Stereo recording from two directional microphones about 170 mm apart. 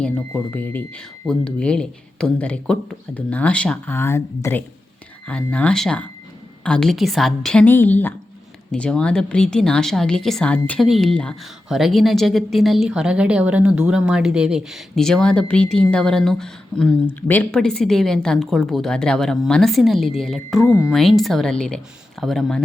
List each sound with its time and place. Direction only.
0.0 s speech: 10° left (ahead or behind)